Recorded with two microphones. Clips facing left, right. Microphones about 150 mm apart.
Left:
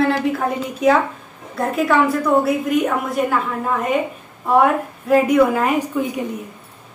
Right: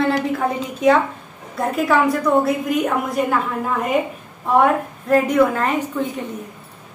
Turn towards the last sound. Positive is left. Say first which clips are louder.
# left 2 dB
turn(degrees=10)  # may be behind; listen again after turning